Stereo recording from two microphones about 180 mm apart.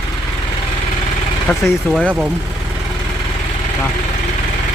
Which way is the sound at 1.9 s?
5° right (ahead or behind).